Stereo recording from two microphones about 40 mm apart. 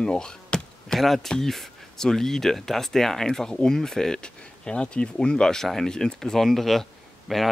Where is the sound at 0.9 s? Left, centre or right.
Centre.